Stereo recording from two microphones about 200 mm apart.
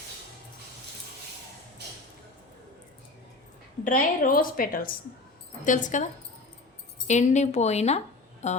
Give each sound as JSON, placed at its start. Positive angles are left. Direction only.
{"t": 3.8, "sound": "a woman's voice", "side_deg": 45}
{"t": 7.1, "sound": "speech", "side_deg": 35}